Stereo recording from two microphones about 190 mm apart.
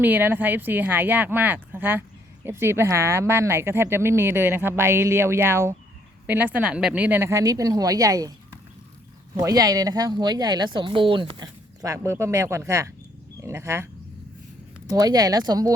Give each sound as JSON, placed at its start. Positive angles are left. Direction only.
{"t": 0.0, "sound": "speech", "side_deg": -10}
{"t": 9.3, "sound": "speech", "side_deg": -20}
{"t": 14.9, "sound": "speech", "side_deg": -20}